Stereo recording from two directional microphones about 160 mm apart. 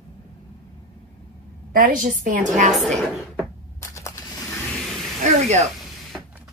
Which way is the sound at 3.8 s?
20° left (ahead or behind).